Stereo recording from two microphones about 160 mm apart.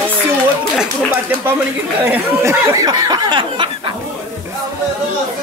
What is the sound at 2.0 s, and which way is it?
Speech, 15° right (ahead or behind).